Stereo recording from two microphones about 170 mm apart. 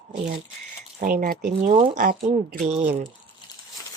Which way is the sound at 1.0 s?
50° right (ahead or behind).